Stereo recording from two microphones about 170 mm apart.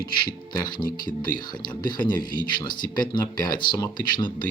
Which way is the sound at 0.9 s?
55° left (ahead or behind).